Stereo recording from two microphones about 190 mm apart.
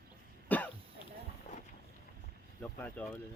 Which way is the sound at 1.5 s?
45° left (ahead or behind).